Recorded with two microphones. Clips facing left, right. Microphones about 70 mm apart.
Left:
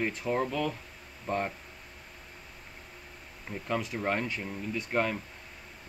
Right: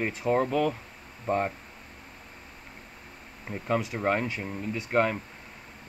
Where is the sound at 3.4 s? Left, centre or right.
Centre.